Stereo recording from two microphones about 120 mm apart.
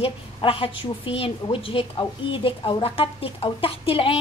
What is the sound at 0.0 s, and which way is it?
A woman's voice, 50° left (ahead or behind).